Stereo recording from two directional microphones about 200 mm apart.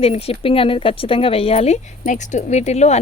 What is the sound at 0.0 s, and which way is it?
Speech, 30° left (ahead or behind).